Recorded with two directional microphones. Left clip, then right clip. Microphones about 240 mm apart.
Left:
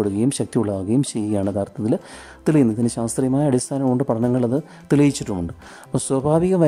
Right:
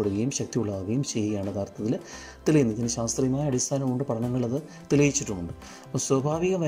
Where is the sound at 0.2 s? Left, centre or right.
Centre.